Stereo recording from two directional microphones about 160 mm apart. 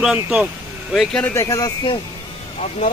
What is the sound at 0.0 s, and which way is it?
Speech, 5° right (ahead or behind).